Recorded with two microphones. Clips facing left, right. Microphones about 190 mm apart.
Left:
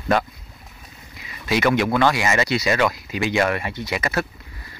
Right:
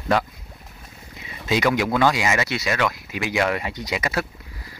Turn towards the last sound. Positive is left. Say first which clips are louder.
# left 1 dB
turn(degrees=-15)  # may be behind; listen again after turning